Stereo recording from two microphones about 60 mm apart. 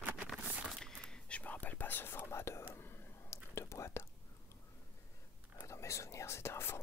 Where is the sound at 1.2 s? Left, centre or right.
Left.